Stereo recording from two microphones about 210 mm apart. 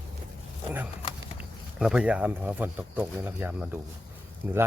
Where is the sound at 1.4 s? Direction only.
5° right (ahead or behind).